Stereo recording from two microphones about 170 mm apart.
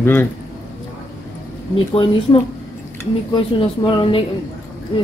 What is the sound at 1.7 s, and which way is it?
Speech, 30° left (ahead or behind).